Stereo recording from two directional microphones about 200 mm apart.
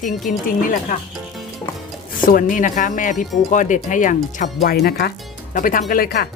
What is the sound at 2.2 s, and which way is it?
Speech, 45° left (ahead or behind).